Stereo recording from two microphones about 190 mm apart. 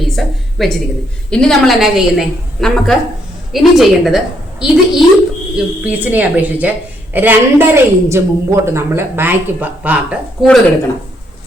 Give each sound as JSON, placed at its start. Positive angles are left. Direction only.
{"t": 0.0, "sound": "a woman's voice", "side_deg": 0}